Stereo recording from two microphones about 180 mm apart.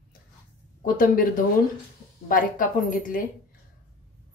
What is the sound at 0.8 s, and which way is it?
A woman's voice, 50° left (ahead or behind).